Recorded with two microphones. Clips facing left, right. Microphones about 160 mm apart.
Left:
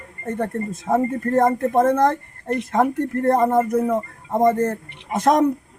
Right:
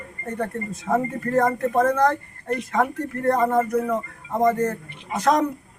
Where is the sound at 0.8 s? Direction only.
25° left (ahead or behind).